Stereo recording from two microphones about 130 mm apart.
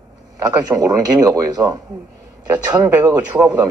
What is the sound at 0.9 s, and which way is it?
Speech, 30° right (ahead or behind).